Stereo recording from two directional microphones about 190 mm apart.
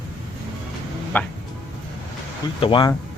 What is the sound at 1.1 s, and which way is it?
Speech, 10° left (ahead or behind).